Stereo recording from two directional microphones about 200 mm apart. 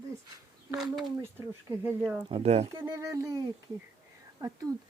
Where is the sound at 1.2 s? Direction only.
10° right (ahead or behind).